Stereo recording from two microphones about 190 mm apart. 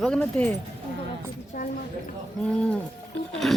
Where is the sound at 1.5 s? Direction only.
45° left (ahead or behind).